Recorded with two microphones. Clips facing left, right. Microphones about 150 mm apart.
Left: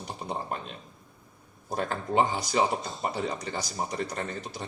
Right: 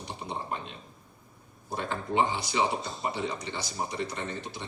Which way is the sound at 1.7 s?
40° left (ahead or behind).